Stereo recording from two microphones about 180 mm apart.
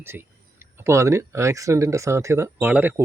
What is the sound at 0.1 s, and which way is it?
Speech, 10° right (ahead or behind).